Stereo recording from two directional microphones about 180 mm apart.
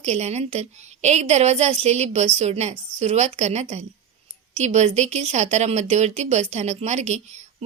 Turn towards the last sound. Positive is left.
turn(degrees=-40)  # may be behind; listen again after turning